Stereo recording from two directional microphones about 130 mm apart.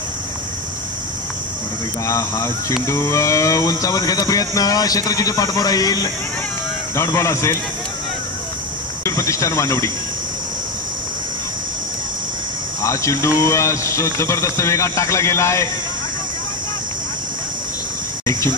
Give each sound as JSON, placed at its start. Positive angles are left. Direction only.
{"t": 2.0, "sound": "speech", "side_deg": 25}
{"t": 9.0, "sound": "speech", "side_deg": 25}
{"t": 12.8, "sound": "speech", "side_deg": 25}